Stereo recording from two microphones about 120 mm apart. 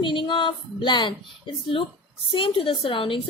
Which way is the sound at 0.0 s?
45° left (ahead or behind).